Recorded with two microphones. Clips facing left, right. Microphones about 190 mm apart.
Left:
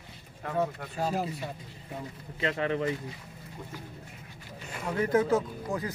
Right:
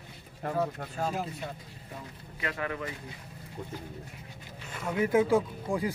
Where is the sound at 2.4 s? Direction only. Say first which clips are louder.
Left 5 dB; 25° left (ahead or behind).